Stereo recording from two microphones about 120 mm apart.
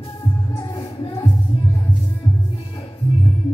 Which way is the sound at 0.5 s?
40° left (ahead or behind).